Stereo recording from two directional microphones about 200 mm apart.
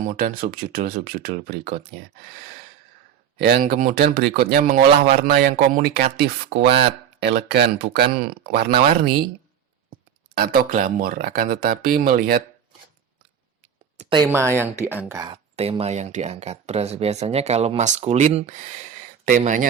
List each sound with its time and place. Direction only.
0.0 s speech: 40° right (ahead or behind)
3.3 s speech: 50° right (ahead or behind)
10.3 s speech: 50° right (ahead or behind)
14.0 s speech: 30° right (ahead or behind)
14.3 s speech: 10° right (ahead or behind)
15.5 s speech: 30° right (ahead or behind)